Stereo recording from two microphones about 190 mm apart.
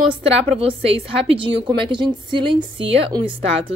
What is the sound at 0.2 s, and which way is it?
Speech, 30° right (ahead or behind).